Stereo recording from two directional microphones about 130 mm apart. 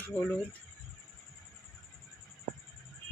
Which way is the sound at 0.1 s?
5° left (ahead or behind).